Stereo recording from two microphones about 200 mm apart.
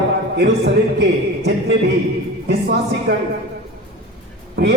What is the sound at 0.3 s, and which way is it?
Speech, 55° right (ahead or behind).